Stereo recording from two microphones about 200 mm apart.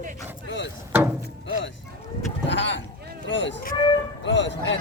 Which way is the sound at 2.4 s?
65° left (ahead or behind).